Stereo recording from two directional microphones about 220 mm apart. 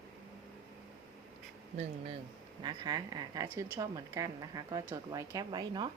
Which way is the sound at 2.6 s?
20° right (ahead or behind).